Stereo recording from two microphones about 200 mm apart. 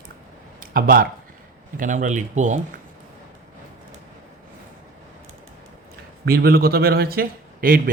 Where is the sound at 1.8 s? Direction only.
40° right (ahead or behind).